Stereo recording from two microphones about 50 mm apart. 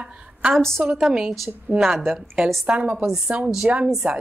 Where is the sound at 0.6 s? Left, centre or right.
Centre.